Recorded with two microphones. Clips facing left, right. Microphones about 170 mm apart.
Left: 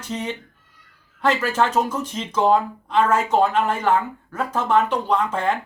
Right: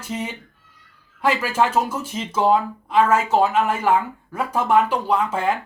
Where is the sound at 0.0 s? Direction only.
10° right (ahead or behind).